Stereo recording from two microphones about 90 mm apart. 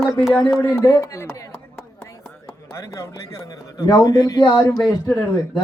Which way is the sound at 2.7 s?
35° left (ahead or behind).